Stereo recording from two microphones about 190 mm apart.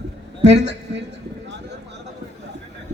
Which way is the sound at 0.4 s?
65° right (ahead or behind).